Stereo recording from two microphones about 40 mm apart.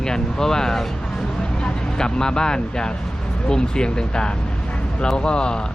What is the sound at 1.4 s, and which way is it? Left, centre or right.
Vehicle, left.